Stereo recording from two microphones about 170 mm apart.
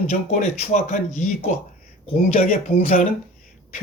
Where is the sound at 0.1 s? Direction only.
45° left (ahead or behind).